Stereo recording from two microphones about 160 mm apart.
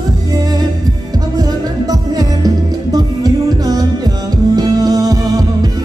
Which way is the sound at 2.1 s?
25° right (ahead or behind).